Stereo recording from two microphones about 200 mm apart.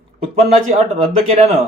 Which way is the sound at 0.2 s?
30° right (ahead or behind).